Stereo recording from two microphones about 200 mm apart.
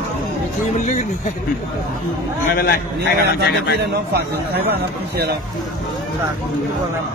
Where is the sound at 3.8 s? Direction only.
55° right (ahead or behind).